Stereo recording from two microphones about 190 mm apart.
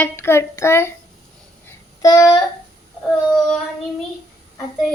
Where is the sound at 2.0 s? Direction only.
20° left (ahead or behind).